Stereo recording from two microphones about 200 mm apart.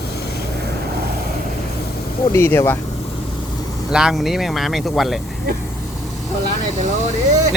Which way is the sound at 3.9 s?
Centre (ahead or behind).